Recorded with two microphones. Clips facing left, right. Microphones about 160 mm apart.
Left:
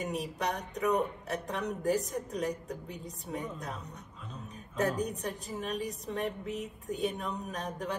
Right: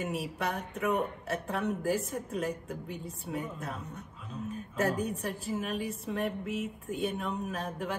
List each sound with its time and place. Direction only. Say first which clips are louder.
0.0 s speech: even; 5° right (ahead or behind)
4.3 s a sound: right 9 dB; 5° right (ahead or behind)
4.9 s a woman's voice: right 1 dB; 35° left (ahead or behind)
5.4 s speech: right 3 dB; 5° right (ahead or behind)